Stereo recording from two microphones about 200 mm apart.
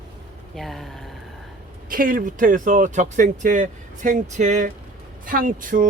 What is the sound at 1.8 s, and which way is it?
Speech, 45° right (ahead or behind).